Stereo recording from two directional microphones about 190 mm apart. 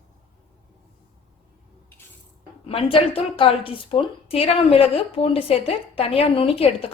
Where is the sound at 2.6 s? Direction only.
30° left (ahead or behind).